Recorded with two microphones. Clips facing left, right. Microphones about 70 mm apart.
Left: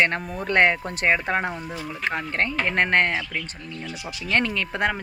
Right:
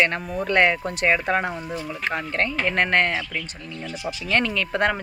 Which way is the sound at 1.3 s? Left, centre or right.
Centre.